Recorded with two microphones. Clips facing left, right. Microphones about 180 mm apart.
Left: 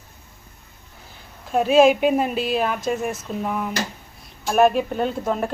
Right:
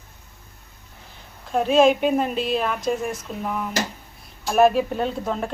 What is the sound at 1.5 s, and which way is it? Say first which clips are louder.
A woman's voice: left 2 dB; 5° left (ahead or behind).